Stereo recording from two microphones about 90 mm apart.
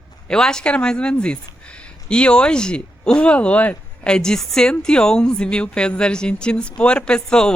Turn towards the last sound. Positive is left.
turn(degrees=10)  # may be behind; listen again after turning